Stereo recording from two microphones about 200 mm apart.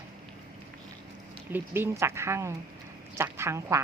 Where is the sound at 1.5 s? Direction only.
10° right (ahead or behind).